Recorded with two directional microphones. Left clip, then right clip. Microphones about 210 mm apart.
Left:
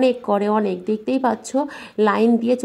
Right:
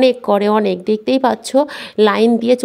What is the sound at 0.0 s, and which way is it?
Speech, 40° right (ahead or behind).